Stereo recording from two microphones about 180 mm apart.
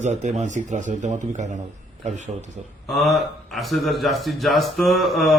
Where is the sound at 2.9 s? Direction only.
Centre (ahead or behind).